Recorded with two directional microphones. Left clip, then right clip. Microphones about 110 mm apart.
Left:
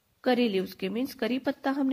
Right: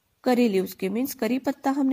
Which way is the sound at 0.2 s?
40° right (ahead or behind).